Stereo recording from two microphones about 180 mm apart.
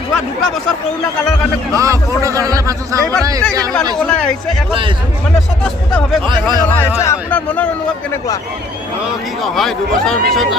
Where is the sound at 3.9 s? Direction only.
5° left (ahead or behind).